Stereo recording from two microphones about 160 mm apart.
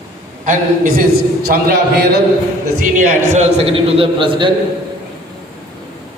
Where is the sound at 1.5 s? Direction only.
75° right (ahead or behind).